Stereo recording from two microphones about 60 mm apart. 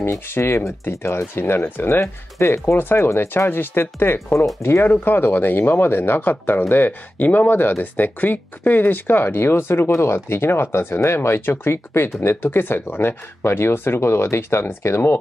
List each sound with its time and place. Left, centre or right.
0.4 s speech: left
1.0 s speech: left